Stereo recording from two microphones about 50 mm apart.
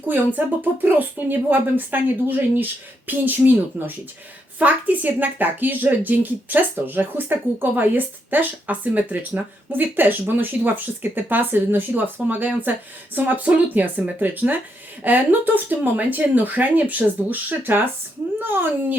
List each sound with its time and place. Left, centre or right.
0.3 s a woman's voice: right